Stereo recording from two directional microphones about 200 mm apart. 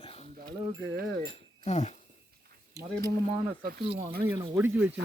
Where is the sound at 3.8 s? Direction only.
30° right (ahead or behind).